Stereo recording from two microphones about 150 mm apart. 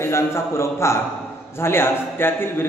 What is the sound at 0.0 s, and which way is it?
A man's voice, 15° left (ahead or behind).